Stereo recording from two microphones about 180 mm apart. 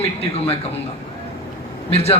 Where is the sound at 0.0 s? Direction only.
35° left (ahead or behind).